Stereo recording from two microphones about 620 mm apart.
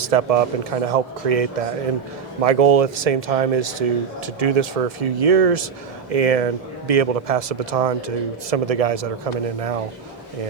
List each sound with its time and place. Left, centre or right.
0.0 s speech: right